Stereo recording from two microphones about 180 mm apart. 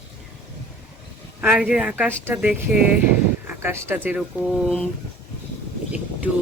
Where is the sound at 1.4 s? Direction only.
5° right (ahead or behind).